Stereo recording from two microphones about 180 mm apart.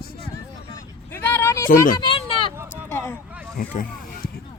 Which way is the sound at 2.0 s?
30° left (ahead or behind).